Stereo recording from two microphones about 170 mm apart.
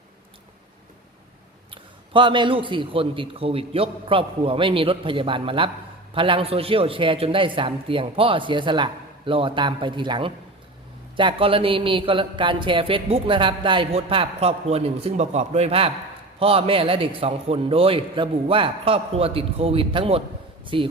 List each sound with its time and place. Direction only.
1.7 s speech: 30° right (ahead or behind)